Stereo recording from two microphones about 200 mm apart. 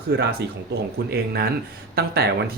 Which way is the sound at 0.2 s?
55° right (ahead or behind).